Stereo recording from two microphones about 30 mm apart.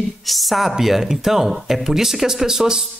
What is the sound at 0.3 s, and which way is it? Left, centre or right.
Speech, centre.